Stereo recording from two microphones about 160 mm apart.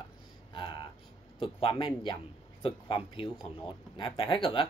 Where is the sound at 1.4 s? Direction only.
30° left (ahead or behind).